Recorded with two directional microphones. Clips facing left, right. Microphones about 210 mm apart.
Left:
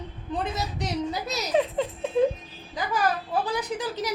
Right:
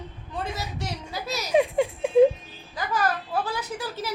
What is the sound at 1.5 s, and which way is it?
Speech, 10° right (ahead or behind).